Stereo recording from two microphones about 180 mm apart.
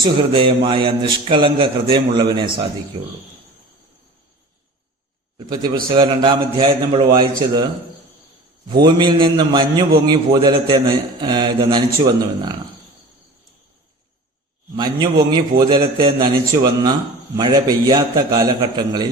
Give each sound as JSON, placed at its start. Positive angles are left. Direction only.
{"t": 0.0, "sound": "a man's voice", "side_deg": -30}
{"t": 5.9, "sound": "a man's voice", "side_deg": -25}
{"t": 8.7, "sound": "a man's voice", "side_deg": -25}
{"t": 14.8, "sound": "a man's voice", "side_deg": -25}